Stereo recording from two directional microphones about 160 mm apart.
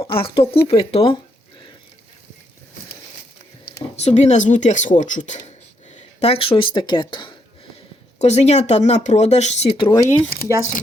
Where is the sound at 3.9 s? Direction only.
45° left (ahead or behind).